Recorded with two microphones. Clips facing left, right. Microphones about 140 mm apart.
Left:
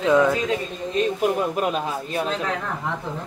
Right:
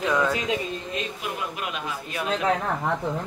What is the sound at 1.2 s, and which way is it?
A man's voice, 45° left (ahead or behind).